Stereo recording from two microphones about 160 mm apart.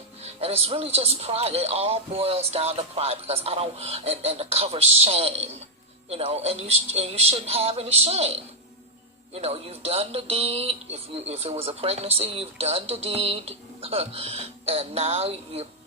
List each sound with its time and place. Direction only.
0.2 s speech: 40° right (ahead or behind)